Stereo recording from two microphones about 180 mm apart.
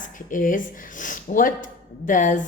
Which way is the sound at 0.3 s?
45° left (ahead or behind).